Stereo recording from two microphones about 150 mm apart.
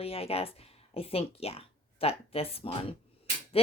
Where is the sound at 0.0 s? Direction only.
40° left (ahead or behind).